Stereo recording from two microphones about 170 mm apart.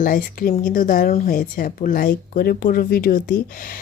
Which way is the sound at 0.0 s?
55° left (ahead or behind).